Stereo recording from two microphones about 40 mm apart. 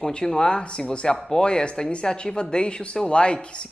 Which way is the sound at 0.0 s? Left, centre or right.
Left.